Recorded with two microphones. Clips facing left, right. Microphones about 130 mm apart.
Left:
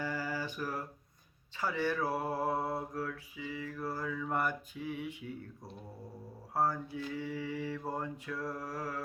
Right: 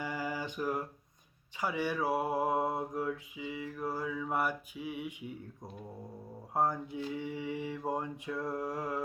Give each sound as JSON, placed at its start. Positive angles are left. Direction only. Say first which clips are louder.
{"t": 0.0, "sound": "a sound", "louder": "even", "side_deg": -15}
{"t": 1.5, "sound": "mantra", "louder": "even", "side_deg": -15}
{"t": 6.5, "sound": "mantra", "louder": "right 1 dB", "side_deg": -20}